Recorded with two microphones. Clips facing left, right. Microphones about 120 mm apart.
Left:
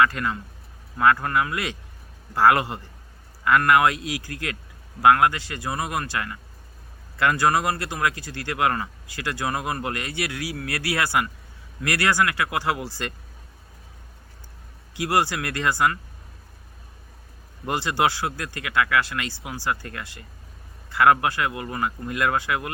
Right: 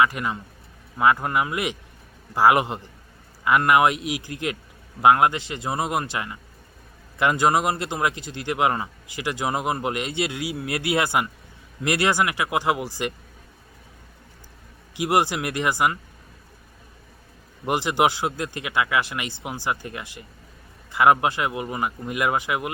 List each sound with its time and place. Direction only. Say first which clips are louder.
0.0 s speech: even; 15° right (ahead or behind)
14.9 s speech: right 2 dB; 20° right (ahead or behind)
17.7 s speech: right 2 dB; 20° right (ahead or behind)